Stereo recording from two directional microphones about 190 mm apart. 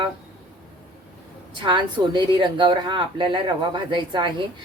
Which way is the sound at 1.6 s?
25° right (ahead or behind).